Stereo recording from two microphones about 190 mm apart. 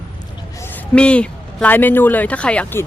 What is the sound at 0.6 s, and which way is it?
A man's voice, 10° left (ahead or behind).